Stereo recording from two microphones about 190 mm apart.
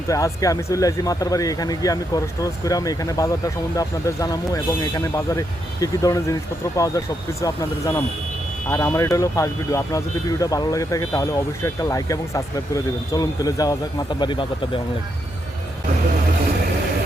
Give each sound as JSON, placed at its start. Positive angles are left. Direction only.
{"t": 0.1, "sound": "speech", "side_deg": 20}